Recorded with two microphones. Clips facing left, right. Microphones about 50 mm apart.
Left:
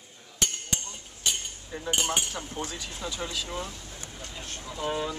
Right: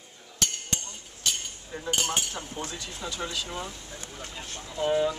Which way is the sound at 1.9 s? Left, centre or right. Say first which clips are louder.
Left 1 dB; left.